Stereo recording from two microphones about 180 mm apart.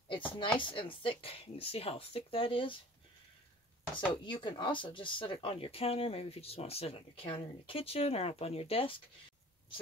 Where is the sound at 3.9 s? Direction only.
25° left (ahead or behind).